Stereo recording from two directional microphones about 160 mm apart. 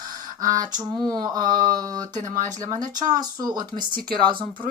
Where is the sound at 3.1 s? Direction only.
25° right (ahead or behind).